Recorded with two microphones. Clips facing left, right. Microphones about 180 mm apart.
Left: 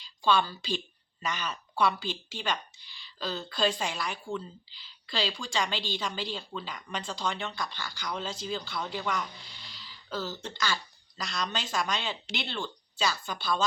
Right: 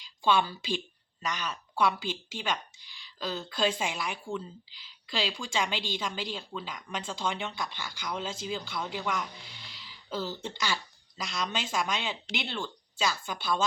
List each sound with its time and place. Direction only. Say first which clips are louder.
0.2 s speech: even; 20° right (ahead or behind)
1.2 s speech: even; 5° right (ahead or behind)
6.0 s speech: even; 5° right (ahead or behind)
9.6 s throat clearing: right 1 dB; 20° right (ahead or behind)
11.2 s speech: even; 10° right (ahead or behind)